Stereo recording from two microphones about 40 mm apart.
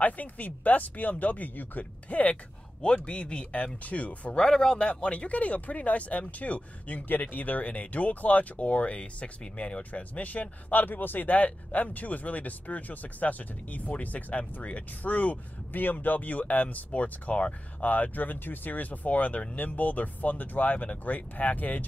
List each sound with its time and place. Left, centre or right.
0.0 s speech: left
2.8 s speech: left
3.8 s speech: left
4.4 s speech: centre
4.8 s speech: left